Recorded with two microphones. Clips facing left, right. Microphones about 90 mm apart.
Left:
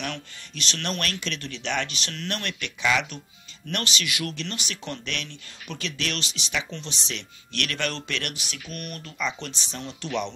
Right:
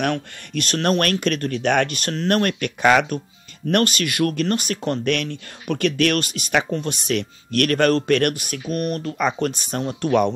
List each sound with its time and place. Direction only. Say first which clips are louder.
0.0 s speech: right 11 dB; 55° right (ahead or behind)